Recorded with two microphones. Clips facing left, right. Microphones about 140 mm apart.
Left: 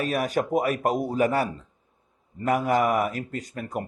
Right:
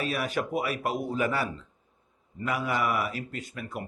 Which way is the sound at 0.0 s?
45° left (ahead or behind).